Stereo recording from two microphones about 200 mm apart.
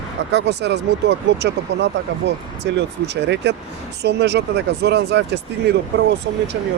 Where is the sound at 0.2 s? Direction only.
60° right (ahead or behind).